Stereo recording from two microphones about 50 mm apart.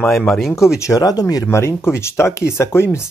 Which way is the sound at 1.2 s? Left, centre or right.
Left.